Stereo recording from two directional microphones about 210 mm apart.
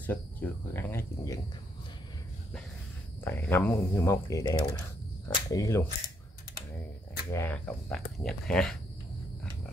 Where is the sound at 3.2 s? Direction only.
10° left (ahead or behind).